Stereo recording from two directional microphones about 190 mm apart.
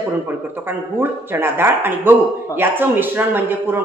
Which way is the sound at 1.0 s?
10° right (ahead or behind).